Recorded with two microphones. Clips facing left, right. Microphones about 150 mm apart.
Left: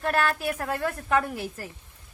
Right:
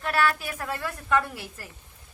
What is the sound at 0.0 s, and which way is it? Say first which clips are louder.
Speech: left 1 dB; 45° left (ahead or behind).